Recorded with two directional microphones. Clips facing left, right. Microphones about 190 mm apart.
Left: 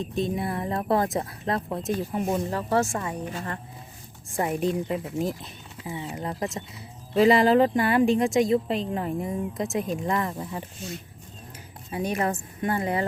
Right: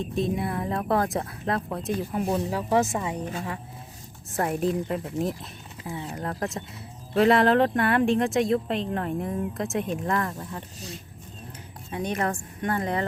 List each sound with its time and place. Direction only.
0.0 s speech: centre (ahead or behind)
2.5 s a woman's voice: 10° right (ahead or behind)
4.6 s speech: centre (ahead or behind)
11.9 s speech: 5° left (ahead or behind)